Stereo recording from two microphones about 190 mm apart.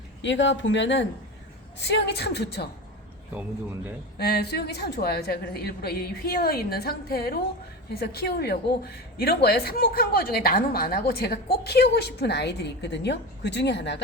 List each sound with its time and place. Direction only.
0.2 s a woman's voice: 70° left (ahead or behind)
4.2 s a woman's voice: 60° left (ahead or behind)